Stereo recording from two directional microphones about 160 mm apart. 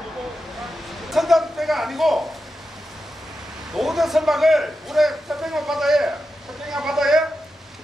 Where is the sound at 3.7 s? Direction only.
Centre (ahead or behind).